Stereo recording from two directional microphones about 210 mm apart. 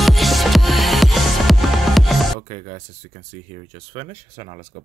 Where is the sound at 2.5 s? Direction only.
35° right (ahead or behind).